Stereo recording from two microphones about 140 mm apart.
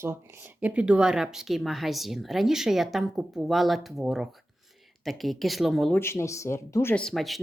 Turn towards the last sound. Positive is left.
turn(degrees=0)  # may be behind; listen again after turning